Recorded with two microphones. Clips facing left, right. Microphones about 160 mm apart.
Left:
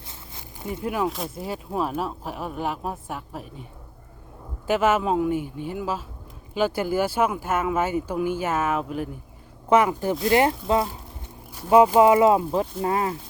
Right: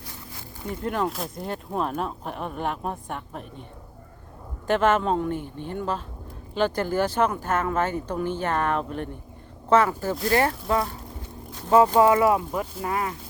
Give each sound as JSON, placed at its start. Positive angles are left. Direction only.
{"t": 0.7, "sound": "speech", "side_deg": 10}
{"t": 11.5, "sound": "speech", "side_deg": 15}